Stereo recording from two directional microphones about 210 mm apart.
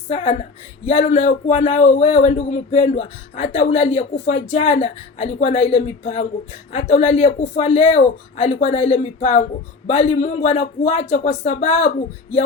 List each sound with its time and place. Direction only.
0.1 s speech: 30° left (ahead or behind)